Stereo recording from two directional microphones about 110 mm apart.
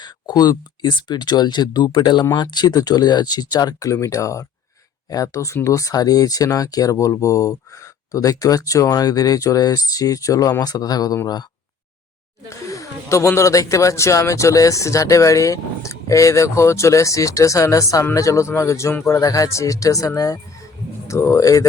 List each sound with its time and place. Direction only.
0.0 s speech: 35° left (ahead or behind)
12.5 s speech: 30° left (ahead or behind)